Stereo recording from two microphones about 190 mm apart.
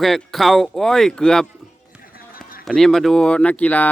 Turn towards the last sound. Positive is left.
turn(degrees=10)  # may be behind; listen again after turning